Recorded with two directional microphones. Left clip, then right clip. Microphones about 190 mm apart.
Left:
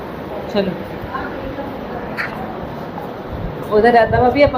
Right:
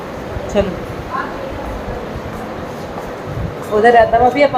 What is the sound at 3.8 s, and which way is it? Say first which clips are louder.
Speech: right 3 dB; centre (ahead or behind).